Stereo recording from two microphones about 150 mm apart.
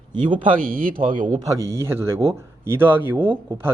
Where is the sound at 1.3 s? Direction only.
20° right (ahead or behind).